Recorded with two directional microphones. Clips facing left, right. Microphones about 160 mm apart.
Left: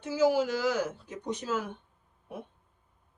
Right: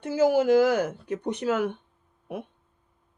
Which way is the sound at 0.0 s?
55° right (ahead or behind).